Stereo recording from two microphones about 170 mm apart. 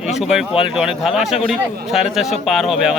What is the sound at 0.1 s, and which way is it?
Speech, centre (ahead or behind).